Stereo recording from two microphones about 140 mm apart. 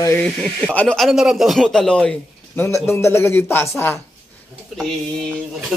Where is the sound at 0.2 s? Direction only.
5° left (ahead or behind).